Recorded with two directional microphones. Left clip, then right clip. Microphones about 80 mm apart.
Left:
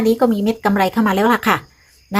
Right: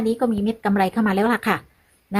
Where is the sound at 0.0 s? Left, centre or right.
Right.